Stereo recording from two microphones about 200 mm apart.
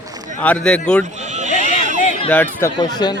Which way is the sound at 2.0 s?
30° left (ahead or behind).